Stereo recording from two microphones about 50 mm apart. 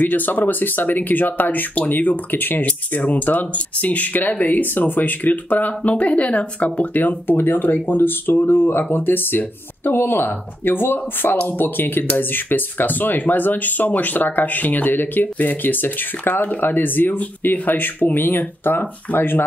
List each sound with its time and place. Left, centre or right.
0.0 s speech: left
2.6 s speech: left
8.5 s speech: left